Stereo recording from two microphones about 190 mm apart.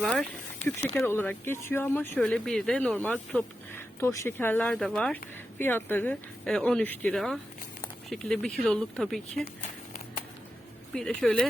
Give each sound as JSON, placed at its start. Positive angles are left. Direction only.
{"t": 0.0, "sound": "speech", "side_deg": 0}
{"t": 0.6, "sound": "speech", "side_deg": 35}
{"t": 0.9, "sound": "speech", "side_deg": 10}
{"t": 10.9, "sound": "speech", "side_deg": 0}